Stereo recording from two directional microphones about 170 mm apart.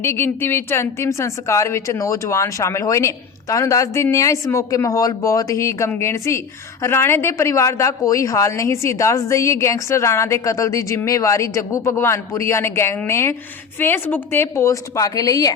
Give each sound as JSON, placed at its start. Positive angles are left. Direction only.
{"t": 0.0, "sound": "a woman's voice", "side_deg": 15}